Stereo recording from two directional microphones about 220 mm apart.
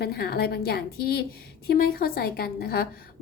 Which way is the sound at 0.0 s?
45° left (ahead or behind).